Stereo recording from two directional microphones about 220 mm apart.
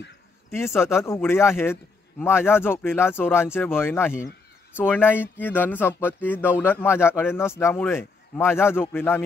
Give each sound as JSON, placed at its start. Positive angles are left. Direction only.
{"t": 0.5, "sound": "speech", "side_deg": 10}